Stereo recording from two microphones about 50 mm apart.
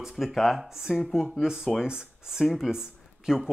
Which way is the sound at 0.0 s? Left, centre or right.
Centre.